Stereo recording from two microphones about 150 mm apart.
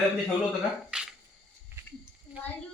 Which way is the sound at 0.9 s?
5° right (ahead or behind).